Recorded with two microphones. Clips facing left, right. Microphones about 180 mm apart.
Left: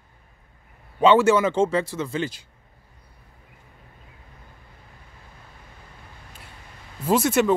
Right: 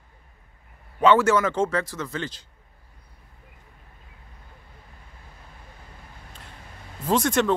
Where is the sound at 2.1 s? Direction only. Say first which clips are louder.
Left 4 dB; 10° left (ahead or behind).